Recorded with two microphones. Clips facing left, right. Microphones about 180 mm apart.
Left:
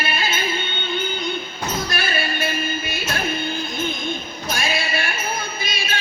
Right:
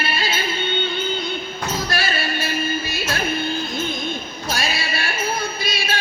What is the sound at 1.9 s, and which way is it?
Music, 50° left (ahead or behind).